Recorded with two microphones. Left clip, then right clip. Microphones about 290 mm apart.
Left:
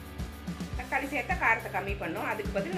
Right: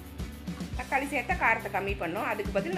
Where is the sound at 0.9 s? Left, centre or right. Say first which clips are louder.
Right 2 dB; right.